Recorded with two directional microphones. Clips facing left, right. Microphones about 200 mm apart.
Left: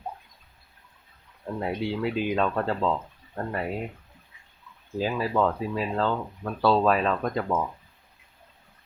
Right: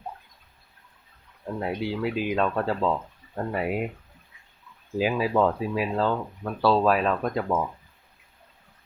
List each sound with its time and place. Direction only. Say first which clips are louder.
1.5 s speech: even; centre (ahead or behind)
4.9 s speech: right 2 dB; 10° right (ahead or behind)